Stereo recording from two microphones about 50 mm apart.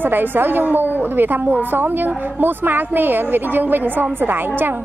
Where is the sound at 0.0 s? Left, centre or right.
Right.